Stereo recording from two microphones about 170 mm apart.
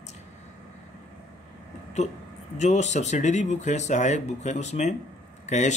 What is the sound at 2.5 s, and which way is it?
Speech, 40° left (ahead or behind).